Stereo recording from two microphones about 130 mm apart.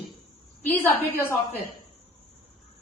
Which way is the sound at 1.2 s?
15° left (ahead or behind).